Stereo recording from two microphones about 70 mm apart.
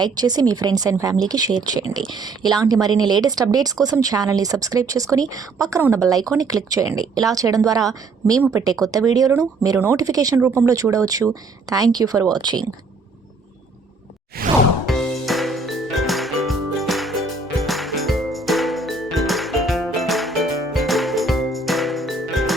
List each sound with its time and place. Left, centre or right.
0.0 s a woman's voice: right
9.7 s a woman's voice: right
11.7 s speech: right
12.4 s speech: right
14.8 s music: centre